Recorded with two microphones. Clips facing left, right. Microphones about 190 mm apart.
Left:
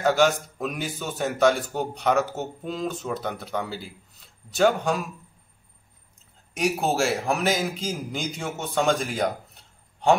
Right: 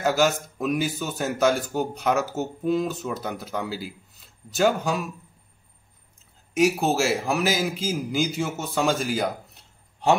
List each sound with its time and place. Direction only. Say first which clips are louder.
0.0 s a man's voice: left 1 dB; 5° right (ahead or behind)
6.5 s a man's voice: right 3 dB; centre (ahead or behind)